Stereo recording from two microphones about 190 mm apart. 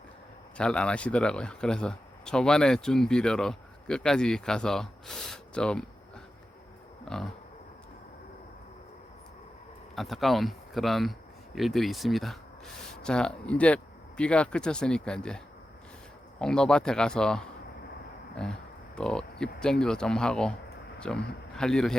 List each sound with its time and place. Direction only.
0.5 s speech: 5° left (ahead or behind)
7.0 s a sound: 5° left (ahead or behind)
9.9 s speech: centre (ahead or behind)
16.4 s a man's voice: 5° left (ahead or behind)